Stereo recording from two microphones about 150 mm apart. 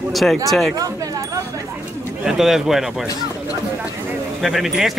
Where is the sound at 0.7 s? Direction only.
25° right (ahead or behind).